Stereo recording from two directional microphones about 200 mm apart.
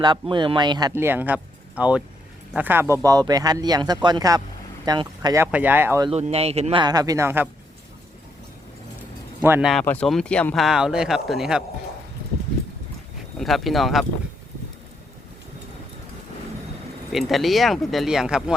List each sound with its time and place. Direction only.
0.0 s speech: 20° right (ahead or behind)
6.1 s speech: 30° right (ahead or behind)
6.8 s speech: 20° right (ahead or behind)
9.4 s speech: 10° right (ahead or behind)
9.8 s speech: 5° left (ahead or behind)
13.4 s speech: centre (ahead or behind)
17.1 s speech: centre (ahead or behind)